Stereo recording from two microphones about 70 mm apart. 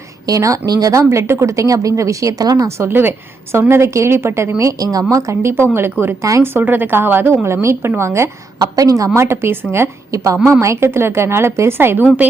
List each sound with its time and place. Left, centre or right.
0.3 s a woman's voice: right
2.4 s a woman's voice: right
2.6 s a woman's voice: right
4.8 s a woman's voice: right
8.6 s a woman's voice: right
9.1 s a woman's voice: right